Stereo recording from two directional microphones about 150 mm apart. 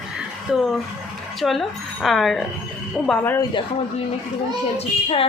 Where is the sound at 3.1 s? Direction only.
15° left (ahead or behind).